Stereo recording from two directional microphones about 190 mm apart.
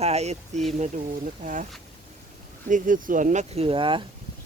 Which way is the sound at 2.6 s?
45° right (ahead or behind).